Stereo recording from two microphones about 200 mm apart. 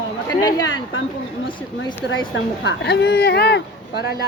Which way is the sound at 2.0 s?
65° left (ahead or behind).